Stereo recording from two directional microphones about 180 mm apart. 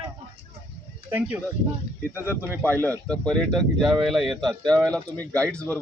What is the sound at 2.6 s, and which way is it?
Speech, 10° left (ahead or behind).